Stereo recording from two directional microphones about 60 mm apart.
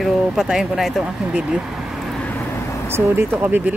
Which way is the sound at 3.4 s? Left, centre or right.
Right.